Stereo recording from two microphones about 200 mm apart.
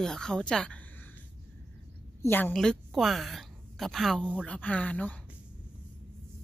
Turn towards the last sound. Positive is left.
turn(degrees=5)  # may be behind; listen again after turning